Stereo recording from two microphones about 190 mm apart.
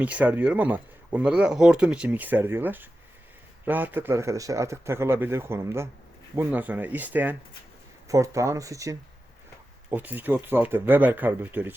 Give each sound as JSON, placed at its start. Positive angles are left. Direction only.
{"t": 0.0, "sound": "speech", "side_deg": -10}